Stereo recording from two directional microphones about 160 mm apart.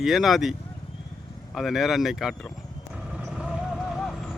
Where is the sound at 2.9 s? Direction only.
5° right (ahead or behind).